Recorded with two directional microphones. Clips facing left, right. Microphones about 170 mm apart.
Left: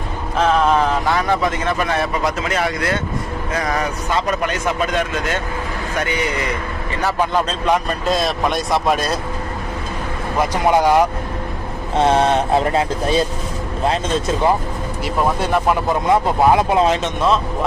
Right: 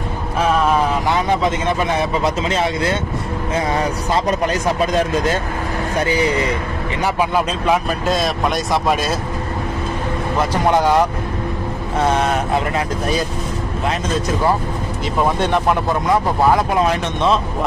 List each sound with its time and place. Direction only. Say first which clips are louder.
0.4 s a sound: left 1 dB; 10° right (ahead or behind)
1.1 s a man's voice: right 1 dB; 20° right (ahead or behind)
7.0 s speech: even; 10° right (ahead or behind)
10.5 s speech: left 1 dB; 10° left (ahead or behind)
12.0 s speech: left 3 dB; 30° left (ahead or behind)
15.3 s speech: right 1 dB; 5° left (ahead or behind)
16.1 s speech: left 1 dB; 20° left (ahead or behind)